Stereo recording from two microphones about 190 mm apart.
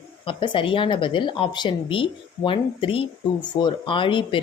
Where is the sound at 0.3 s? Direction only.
25° left (ahead or behind).